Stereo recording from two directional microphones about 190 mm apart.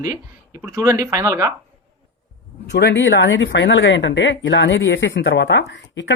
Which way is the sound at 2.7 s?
65° left (ahead or behind).